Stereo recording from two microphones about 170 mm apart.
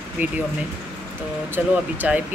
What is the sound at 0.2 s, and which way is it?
Speech, 10° right (ahead or behind).